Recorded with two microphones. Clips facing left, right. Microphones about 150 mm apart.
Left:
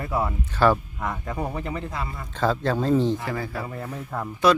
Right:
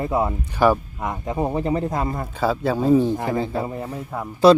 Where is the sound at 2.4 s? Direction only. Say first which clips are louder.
Right 2 dB; 10° right (ahead or behind).